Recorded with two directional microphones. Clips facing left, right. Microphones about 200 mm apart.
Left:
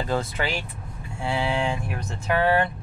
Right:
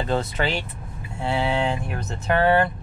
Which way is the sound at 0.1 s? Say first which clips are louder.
Right 4 dB; 25° right (ahead or behind).